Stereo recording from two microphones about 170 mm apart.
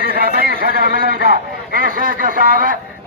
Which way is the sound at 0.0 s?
60° right (ahead or behind).